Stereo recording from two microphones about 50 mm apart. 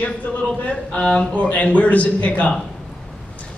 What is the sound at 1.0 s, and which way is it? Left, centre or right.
A man's voice, left.